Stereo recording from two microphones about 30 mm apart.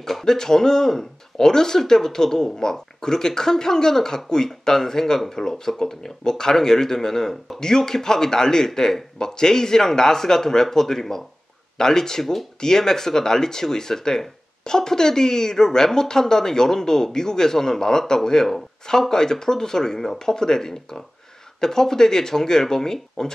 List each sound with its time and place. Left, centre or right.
0.0 s speech: centre
0.3 s speech: centre
12.2 s speech: centre
12.5 s speech: centre